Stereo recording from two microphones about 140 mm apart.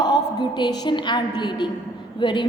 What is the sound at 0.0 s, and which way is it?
A woman's voice, 30° left (ahead or behind).